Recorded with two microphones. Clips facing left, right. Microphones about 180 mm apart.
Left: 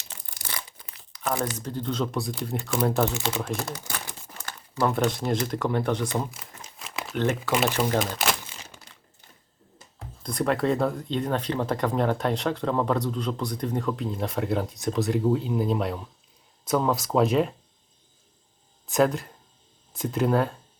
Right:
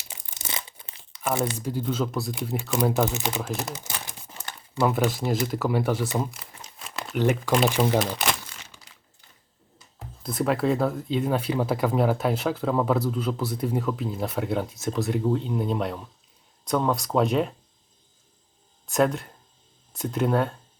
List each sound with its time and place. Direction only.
0.3 s crumpling: 20° right (ahead or behind)
1.5 s speech: 10° right (ahead or behind)
3.1 s speech: 20° right (ahead or behind)
3.6 s crumpling: 20° right (ahead or behind)
4.8 s speech: 5° right (ahead or behind)
10.2 s speech: 5° right (ahead or behind)
18.9 s speech: centre (ahead or behind)